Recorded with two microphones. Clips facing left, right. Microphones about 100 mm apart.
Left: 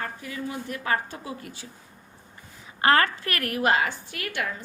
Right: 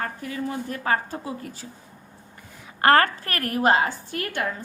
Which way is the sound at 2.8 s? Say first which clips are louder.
Right 3 dB; 45° right (ahead or behind).